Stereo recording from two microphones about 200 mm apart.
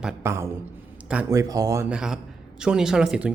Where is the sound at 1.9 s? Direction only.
5° right (ahead or behind).